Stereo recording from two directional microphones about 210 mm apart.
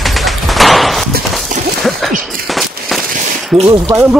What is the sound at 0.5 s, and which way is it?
Slam, centre (ahead or behind).